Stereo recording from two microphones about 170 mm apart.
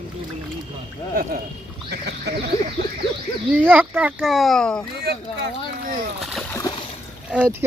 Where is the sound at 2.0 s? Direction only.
80° right.